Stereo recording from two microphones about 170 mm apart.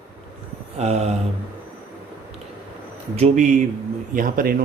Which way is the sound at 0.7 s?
40° right (ahead or behind).